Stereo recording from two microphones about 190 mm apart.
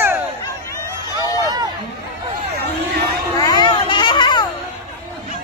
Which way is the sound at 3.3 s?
20° left (ahead or behind).